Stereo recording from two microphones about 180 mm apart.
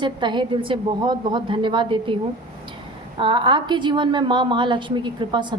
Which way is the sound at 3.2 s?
25° right (ahead or behind).